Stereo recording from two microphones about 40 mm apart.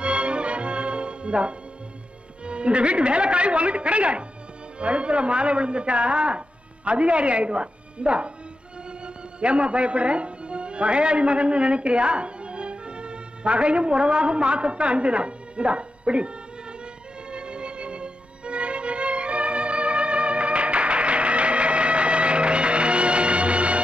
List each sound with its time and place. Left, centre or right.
0.0 s music: right
2.4 s a man's voice: right
17.3 s music: right